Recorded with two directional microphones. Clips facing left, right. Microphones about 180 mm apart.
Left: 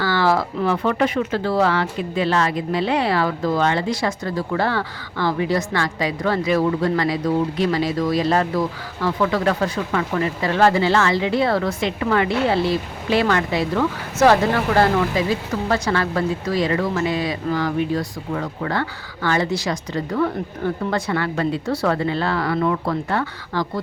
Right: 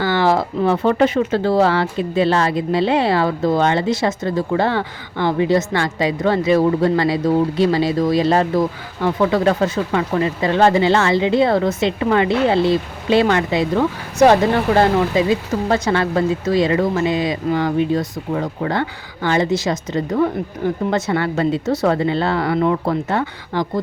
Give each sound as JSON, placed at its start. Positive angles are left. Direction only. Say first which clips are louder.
{"t": 0.0, "sound": "speech", "louder": "right 3 dB", "side_deg": -20}